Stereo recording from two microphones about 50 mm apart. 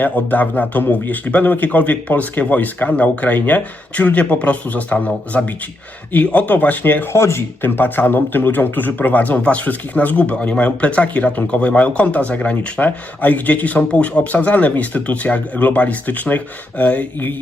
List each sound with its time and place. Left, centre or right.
0.0 s a man's voice: left
7.1 s speech: left
7.6 s a man's voice: left